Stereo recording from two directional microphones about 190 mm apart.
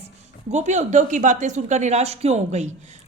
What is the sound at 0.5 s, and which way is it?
A woman's voice, 40° right (ahead or behind).